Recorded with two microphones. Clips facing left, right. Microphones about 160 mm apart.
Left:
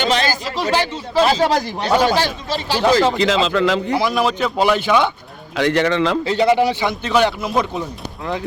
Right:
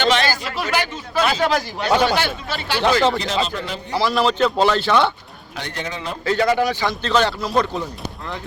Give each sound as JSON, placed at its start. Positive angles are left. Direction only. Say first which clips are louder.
{"t": 0.0, "sound": "speech", "louder": "even", "side_deg": 40}
{"t": 3.2, "sound": "a man's voice", "louder": "left 7 dB", "side_deg": 90}
{"t": 3.9, "sound": "speech", "louder": "left 1 dB", "side_deg": 15}
{"t": 5.5, "sound": "a man's voice", "louder": "left 13 dB", "side_deg": 85}
{"t": 6.2, "sound": "a man's voice", "louder": "right 1 dB", "side_deg": 20}